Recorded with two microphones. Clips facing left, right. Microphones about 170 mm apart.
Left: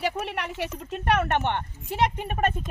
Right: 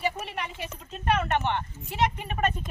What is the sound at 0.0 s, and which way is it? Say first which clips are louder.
Speech: left 2 dB; 70° left (ahead or behind).